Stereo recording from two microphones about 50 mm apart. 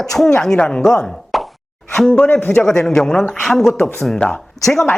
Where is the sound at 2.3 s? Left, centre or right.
Left.